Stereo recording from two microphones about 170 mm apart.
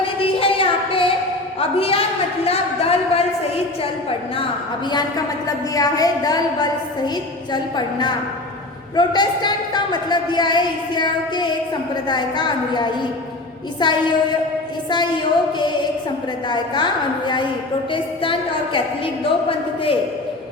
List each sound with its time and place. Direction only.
0.0 s music: 35° left (ahead or behind)
1.5 s a sound: 35° left (ahead or behind)
4.9 s a woman's voice: 25° left (ahead or behind)